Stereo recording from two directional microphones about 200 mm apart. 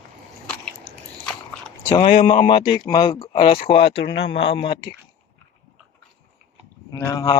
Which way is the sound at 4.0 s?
55° left (ahead or behind).